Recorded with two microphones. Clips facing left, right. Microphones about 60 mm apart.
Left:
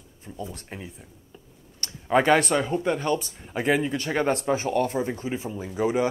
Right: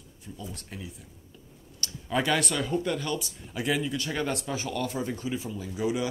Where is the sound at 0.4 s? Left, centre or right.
Left.